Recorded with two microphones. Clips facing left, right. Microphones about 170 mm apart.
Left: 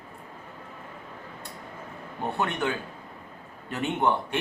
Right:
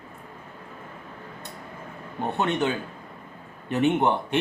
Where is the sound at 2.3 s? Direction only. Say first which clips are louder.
Right 4 dB; 20° right (ahead or behind).